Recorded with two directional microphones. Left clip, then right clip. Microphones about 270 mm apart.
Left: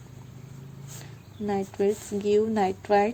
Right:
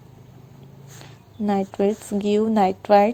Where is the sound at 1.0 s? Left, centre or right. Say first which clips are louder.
Right 6 dB; centre.